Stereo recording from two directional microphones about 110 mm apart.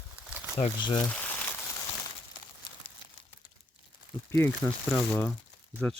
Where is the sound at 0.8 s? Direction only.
45° left (ahead or behind).